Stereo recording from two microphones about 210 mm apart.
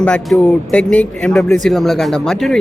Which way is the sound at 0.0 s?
5° left (ahead or behind).